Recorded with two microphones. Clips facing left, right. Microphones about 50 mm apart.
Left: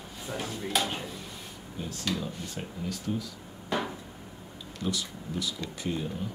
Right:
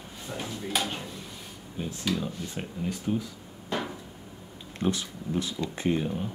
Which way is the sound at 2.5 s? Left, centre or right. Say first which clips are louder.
Right 3 dB; right.